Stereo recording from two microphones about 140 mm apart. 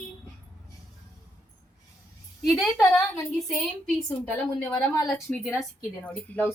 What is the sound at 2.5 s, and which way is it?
Speech, 5° left (ahead or behind).